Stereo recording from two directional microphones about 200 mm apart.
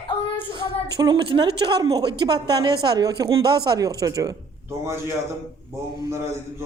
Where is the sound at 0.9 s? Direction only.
20° right (ahead or behind).